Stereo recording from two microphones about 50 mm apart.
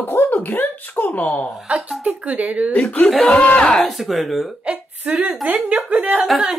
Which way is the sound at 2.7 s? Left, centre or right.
Left.